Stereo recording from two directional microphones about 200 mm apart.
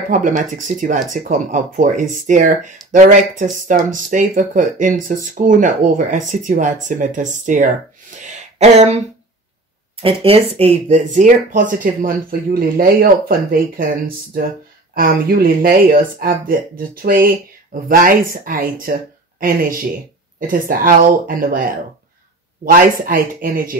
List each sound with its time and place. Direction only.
0.4 s speech: 40° right (ahead or behind)
8.2 s a sound: 35° right (ahead or behind)
10.0 s speech: 30° right (ahead or behind); by 23.8 s 45° right (ahead or behind)